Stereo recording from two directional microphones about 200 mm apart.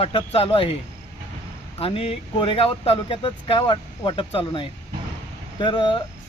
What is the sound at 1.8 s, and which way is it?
Speech, 30° left (ahead or behind).